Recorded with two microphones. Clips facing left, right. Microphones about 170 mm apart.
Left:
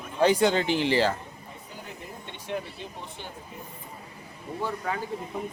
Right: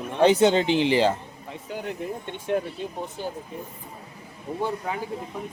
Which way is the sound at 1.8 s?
50° right (ahead or behind).